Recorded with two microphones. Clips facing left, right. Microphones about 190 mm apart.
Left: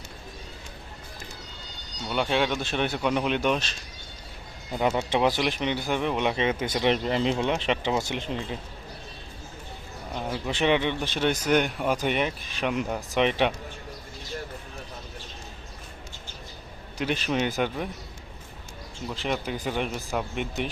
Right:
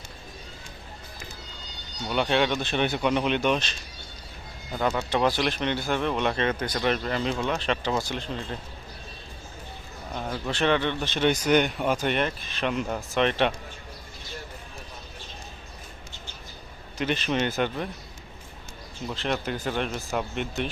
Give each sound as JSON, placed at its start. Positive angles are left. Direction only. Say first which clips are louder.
{"t": 2.0, "sound": "speech", "louder": "right 1 dB", "side_deg": 0}
{"t": 4.8, "sound": "speech", "louder": "left 1 dB", "side_deg": 20}
{"t": 10.2, "sound": "a man's voice", "louder": "left 1 dB", "side_deg": 5}
{"t": 10.5, "sound": "speech", "louder": "even", "side_deg": 15}
{"t": 17.0, "sound": "speech", "louder": "even", "side_deg": 5}
{"t": 19.1, "sound": "speech", "louder": "right 1 dB", "side_deg": 10}